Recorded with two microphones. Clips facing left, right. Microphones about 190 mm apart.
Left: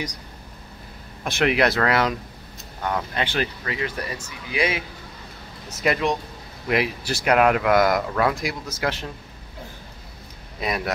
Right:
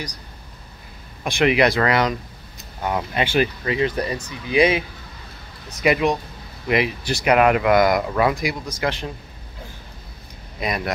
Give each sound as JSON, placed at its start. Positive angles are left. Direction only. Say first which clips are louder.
{"t": 1.2, "sound": "speech", "louder": "right 3 dB", "side_deg": 0}
{"t": 2.8, "sound": "speech", "louder": "right 3 dB", "side_deg": -15}
{"t": 5.9, "sound": "speech", "louder": "right 3 dB", "side_deg": -5}
{"t": 10.6, "sound": "speech", "louder": "right 1 dB", "side_deg": 0}